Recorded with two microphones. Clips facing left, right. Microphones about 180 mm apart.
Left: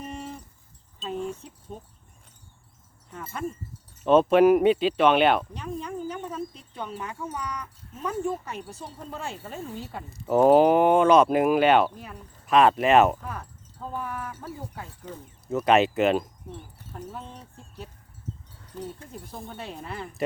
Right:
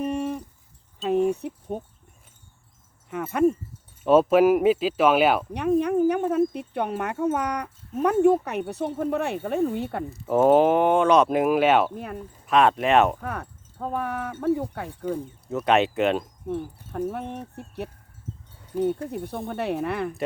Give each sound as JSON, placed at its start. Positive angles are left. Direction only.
{"t": 0.0, "sound": "a sound", "side_deg": -65}
{"t": 1.0, "sound": "wind chime", "side_deg": -65}
{"t": 4.0, "sound": "speech", "side_deg": -5}
{"t": 5.5, "sound": "a sound", "side_deg": -65}
{"t": 6.5, "sound": "speech", "side_deg": -65}
{"t": 10.1, "sound": "speech", "side_deg": 0}
{"t": 11.9, "sound": "speech", "side_deg": -60}
{"t": 12.5, "sound": "speech", "side_deg": 0}
{"t": 13.2, "sound": "speech", "side_deg": -65}
{"t": 15.4, "sound": "speech", "side_deg": 0}
{"t": 16.5, "sound": "speech", "side_deg": -60}